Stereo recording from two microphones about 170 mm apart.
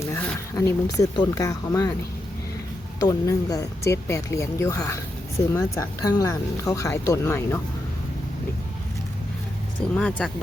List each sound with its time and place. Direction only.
0.0 s a sound: 15° left (ahead or behind)
0.5 s speech: 20° left (ahead or behind)
3.0 s speech: 20° left (ahead or behind)
9.9 s speech: 5° left (ahead or behind)